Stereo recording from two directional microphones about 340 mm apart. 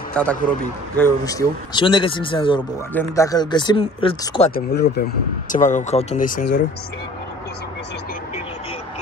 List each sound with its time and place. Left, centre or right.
0.1 s a man's voice: centre
4.6 s speech: left